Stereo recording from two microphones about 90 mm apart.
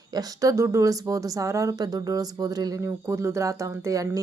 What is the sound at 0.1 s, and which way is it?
Speech, 45° right (ahead or behind).